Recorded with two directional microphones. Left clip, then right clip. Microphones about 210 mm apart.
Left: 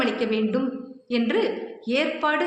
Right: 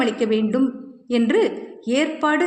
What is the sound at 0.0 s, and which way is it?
A man's voice, 50° right (ahead or behind).